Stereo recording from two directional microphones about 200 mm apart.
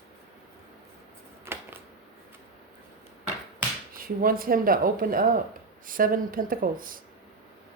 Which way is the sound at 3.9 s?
45° right (ahead or behind).